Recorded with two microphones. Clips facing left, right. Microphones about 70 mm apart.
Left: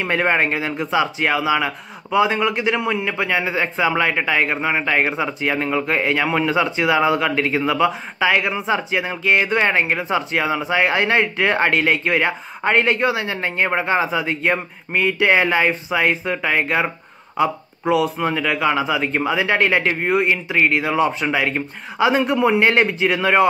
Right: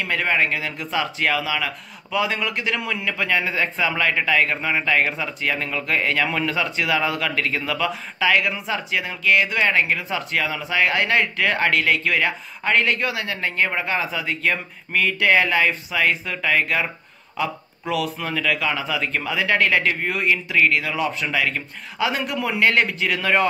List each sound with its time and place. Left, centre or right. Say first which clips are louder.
0.0 s a man's voice: left 3 dB; left